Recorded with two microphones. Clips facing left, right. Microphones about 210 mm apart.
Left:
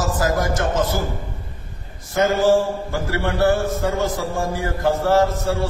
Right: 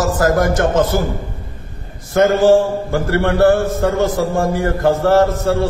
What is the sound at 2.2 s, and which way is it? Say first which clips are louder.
A man's voice: right 5 dB; 60° right (ahead or behind).